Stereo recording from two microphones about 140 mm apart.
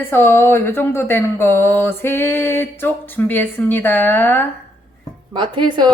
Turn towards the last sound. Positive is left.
turn(degrees=-30)  # may be behind; listen again after turning